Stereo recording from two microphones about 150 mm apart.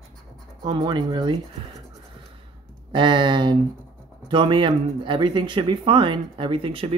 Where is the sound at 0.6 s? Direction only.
30° right (ahead or behind).